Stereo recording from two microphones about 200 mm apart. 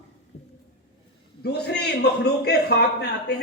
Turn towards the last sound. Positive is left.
turn(degrees=55)  # may be behind; listen again after turning